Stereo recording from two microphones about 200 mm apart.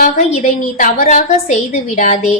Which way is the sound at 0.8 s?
40° left (ahead or behind).